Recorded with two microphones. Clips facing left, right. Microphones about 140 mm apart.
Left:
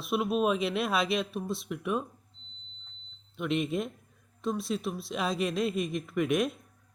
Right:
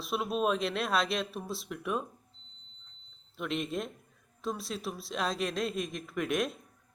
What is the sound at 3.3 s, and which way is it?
Speech, centre (ahead or behind).